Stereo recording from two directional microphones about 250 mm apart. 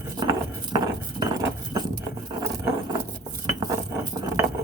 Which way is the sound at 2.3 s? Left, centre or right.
Centre.